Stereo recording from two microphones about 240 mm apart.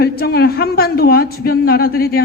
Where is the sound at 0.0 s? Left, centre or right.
Left.